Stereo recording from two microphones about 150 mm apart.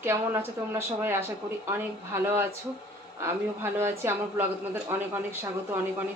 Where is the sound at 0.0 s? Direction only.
15° right (ahead or behind).